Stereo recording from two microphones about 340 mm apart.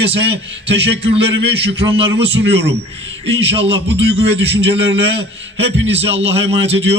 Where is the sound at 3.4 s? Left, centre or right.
Centre.